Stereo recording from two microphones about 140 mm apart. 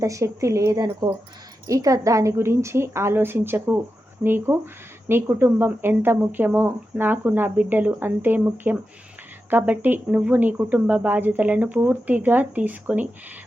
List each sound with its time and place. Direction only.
0.0 s a woman's voice: 20° right (ahead or behind)